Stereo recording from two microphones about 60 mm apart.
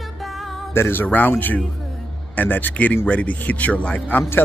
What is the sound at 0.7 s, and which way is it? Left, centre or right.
Speech, left.